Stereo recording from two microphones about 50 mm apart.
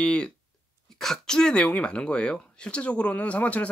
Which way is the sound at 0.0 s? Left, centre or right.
Centre.